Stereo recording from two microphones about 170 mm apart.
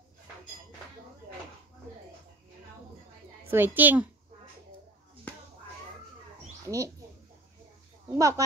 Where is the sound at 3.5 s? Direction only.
10° right (ahead or behind).